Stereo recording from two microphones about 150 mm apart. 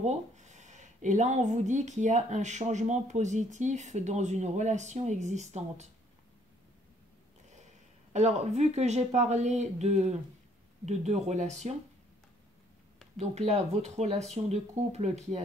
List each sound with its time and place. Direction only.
0.0 s speech: 50° right (ahead or behind)
8.1 s speech: 50° right (ahead or behind)
13.2 s speech: 45° right (ahead or behind)